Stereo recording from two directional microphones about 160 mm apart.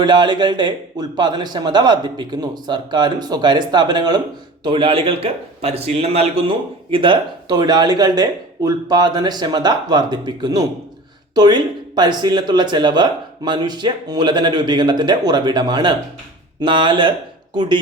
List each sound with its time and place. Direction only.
0.0 s a man's voice: 25° right (ahead or behind)